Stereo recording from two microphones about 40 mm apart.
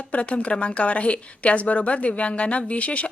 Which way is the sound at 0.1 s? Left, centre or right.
Left.